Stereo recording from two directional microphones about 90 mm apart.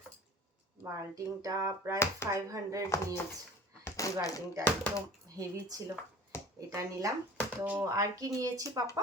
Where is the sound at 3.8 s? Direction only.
35° left (ahead or behind).